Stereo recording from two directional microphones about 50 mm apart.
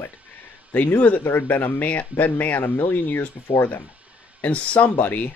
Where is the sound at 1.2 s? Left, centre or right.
Left.